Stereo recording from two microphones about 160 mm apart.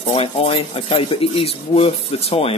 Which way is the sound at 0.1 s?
35° left (ahead or behind).